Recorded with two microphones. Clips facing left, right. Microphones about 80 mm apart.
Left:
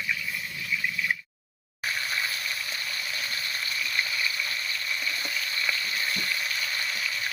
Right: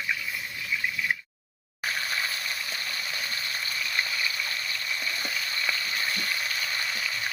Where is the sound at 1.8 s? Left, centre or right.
Centre.